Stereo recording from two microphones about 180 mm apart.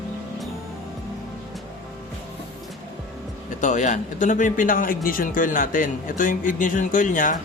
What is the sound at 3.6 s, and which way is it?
Speech, 40° left (ahead or behind).